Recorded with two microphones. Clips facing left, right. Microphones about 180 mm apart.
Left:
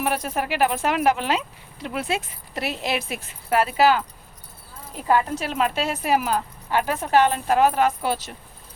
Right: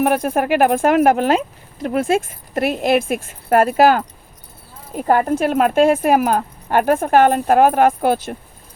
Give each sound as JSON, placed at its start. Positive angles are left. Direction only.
{"t": 0.0, "sound": "speech", "side_deg": -50}